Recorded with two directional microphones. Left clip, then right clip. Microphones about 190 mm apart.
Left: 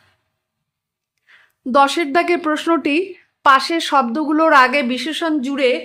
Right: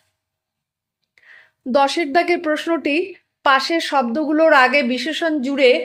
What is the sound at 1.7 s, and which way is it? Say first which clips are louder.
Speech: left 2 dB; 15° left (ahead or behind).